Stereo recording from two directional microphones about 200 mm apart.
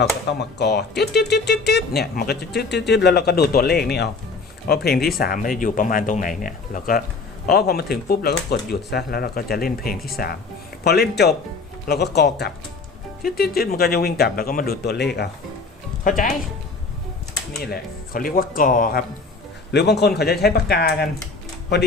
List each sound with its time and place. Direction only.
0.3 s speech: 55° left (ahead or behind)
16.0 s speech: 40° left (ahead or behind)
17.6 s speech: 45° left (ahead or behind)
19.7 s speech: 55° left (ahead or behind)